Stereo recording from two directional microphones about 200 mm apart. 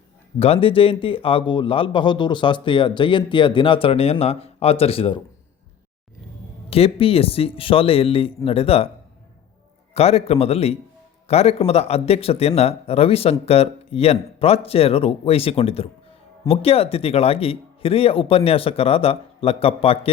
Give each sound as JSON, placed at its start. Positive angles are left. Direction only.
{"t": 0.3, "sound": "speech", "side_deg": 30}
{"t": 6.7, "sound": "speech", "side_deg": 30}
{"t": 9.9, "sound": "speech", "side_deg": 30}